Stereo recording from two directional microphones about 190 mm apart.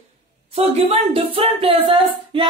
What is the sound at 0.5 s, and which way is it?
Speech, 30° right (ahead or behind).